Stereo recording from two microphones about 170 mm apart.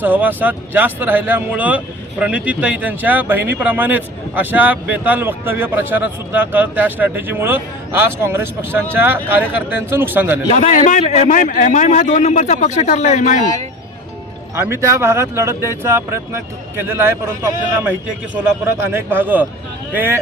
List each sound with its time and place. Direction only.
0.0 s speech: 10° right (ahead or behind)
10.5 s a man's voice: 45° left (ahead or behind)
14.5 s speech: 15° right (ahead or behind)